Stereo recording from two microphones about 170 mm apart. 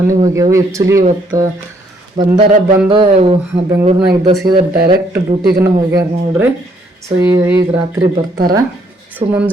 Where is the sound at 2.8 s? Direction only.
30° right (ahead or behind).